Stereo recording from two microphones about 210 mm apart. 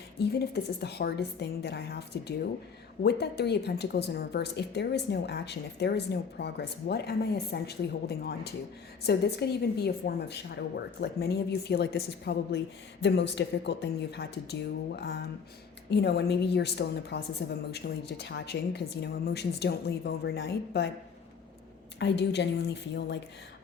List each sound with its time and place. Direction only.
0.2 s a woman's voice: 50° left (ahead or behind)
21.9 s a woman's voice: 55° left (ahead or behind)